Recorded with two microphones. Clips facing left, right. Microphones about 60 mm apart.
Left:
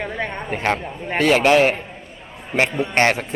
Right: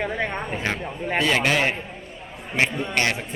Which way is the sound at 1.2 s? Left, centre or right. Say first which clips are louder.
Left 8 dB; left.